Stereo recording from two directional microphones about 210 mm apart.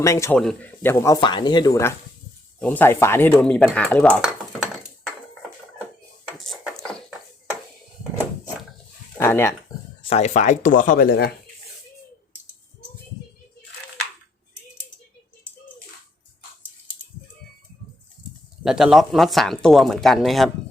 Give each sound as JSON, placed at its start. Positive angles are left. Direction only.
{"t": 0.0, "sound": "speech", "side_deg": 15}
{"t": 4.2, "sound": "dishes", "side_deg": 0}
{"t": 6.4, "sound": "a sound", "side_deg": 0}
{"t": 9.1, "sound": "a sound", "side_deg": 10}
{"t": 10.0, "sound": "speech", "side_deg": 30}
{"t": 18.6, "sound": "speech", "side_deg": 0}